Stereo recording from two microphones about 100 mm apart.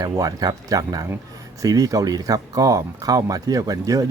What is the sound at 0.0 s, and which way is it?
Speech, 35° right (ahead or behind).